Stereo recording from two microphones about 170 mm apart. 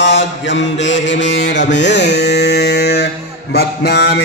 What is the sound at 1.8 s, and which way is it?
Carnatic music, 90° left.